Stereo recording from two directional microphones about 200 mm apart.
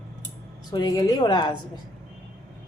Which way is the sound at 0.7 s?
20° left (ahead or behind).